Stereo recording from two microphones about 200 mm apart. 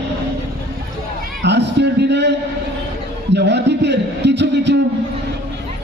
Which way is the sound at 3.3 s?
60° right (ahead or behind).